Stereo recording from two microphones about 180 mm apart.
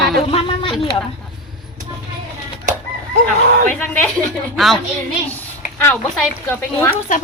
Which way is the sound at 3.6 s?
10° left (ahead or behind).